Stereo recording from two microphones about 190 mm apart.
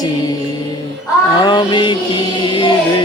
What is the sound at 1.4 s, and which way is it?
Music, 25° left (ahead or behind).